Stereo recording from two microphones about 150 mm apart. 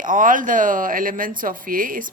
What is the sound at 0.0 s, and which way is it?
Speech, 60° right (ahead or behind).